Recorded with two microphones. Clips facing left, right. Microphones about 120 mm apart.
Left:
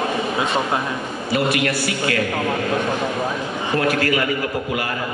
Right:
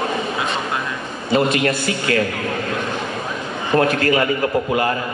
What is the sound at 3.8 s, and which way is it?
Speech, 30° right (ahead or behind).